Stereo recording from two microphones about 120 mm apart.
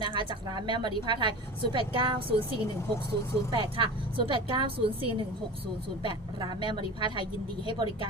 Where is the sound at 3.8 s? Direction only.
45° right (ahead or behind).